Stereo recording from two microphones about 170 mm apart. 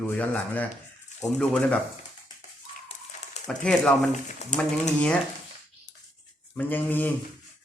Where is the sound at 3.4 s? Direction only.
5° left (ahead or behind).